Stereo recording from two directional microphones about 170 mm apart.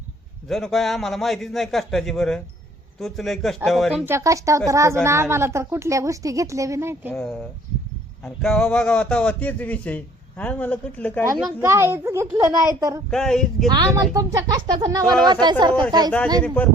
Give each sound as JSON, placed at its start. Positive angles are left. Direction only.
{"t": 0.4, "sound": "a man's voice", "side_deg": 0}
{"t": 4.0, "sound": "a woman's voice", "side_deg": -15}
{"t": 8.2, "sound": "a man's voice", "side_deg": 5}
{"t": 11.6, "sound": "a woman's voice", "side_deg": -15}
{"t": 13.1, "sound": "a man's voice", "side_deg": 5}
{"t": 13.7, "sound": "speech", "side_deg": -20}